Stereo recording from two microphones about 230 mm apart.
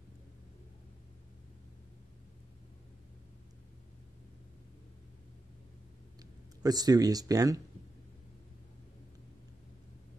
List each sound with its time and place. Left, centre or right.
6.6 s speech: centre